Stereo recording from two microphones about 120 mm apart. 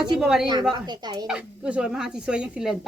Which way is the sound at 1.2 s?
10° right (ahead or behind).